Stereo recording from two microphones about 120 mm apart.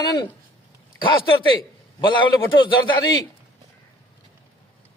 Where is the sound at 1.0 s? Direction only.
45° left (ahead or behind).